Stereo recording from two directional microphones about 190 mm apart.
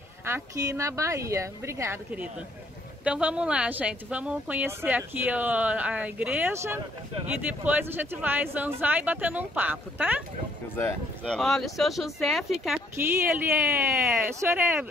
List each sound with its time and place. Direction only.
0.2 s speech: 15° right (ahead or behind)
11.2 s speech: centre (ahead or behind)
13.4 s speech: 10° right (ahead or behind)